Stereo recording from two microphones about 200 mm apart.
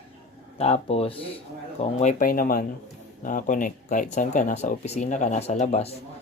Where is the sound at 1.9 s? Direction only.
40° left (ahead or behind).